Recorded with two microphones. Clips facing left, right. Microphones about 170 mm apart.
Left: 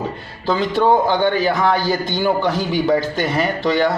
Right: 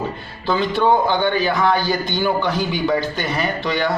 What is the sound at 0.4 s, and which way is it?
A man's voice, 40° left (ahead or behind).